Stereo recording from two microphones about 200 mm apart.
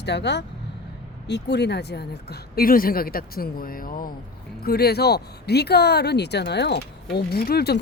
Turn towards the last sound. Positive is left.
turn(degrees=55)  # may be behind; listen again after turning